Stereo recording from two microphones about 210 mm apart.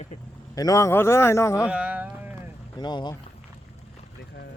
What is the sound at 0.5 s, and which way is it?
A man's voice, 15° left (ahead or behind).